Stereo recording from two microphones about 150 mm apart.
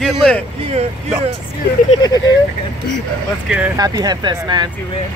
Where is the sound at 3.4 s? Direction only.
10° right (ahead or behind).